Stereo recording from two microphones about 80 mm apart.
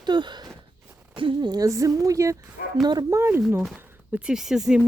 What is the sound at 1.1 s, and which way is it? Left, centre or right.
Speech, right.